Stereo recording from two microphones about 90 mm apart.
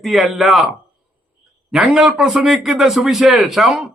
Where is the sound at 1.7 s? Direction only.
5° right (ahead or behind).